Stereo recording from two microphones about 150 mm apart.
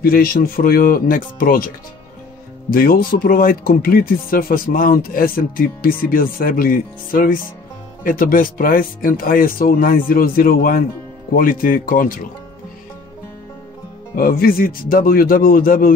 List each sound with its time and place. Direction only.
0.0 s speech: 80° left
2.7 s speech: 75° left (ahead or behind)
14.1 s speech: 75° left (ahead or behind)